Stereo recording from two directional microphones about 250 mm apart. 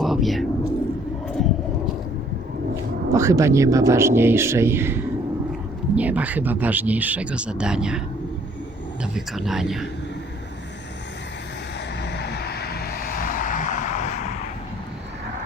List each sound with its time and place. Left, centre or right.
0.0 s a sound: centre
3.1 s a man's voice: centre
9.1 s speech: centre
12.0 s vehicle: left